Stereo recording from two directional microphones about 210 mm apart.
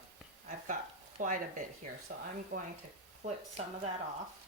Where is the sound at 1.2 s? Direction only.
40° right (ahead or behind).